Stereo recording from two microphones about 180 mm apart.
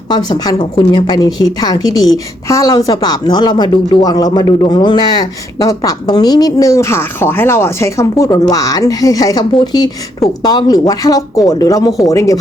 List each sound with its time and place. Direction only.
0.1 s a woman's voice: 25° left (ahead or behind)